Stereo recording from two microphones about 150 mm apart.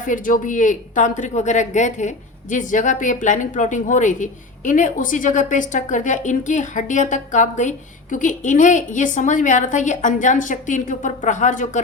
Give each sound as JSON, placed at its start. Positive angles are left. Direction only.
{"t": 0.0, "sound": "speech", "side_deg": 60}